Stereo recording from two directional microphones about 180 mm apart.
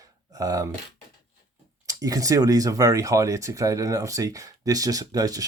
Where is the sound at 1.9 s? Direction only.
20° right (ahead or behind).